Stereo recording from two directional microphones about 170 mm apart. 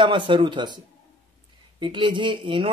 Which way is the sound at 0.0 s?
30° right (ahead or behind).